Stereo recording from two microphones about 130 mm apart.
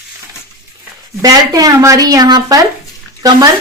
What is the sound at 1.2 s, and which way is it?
Speech, 30° right (ahead or behind).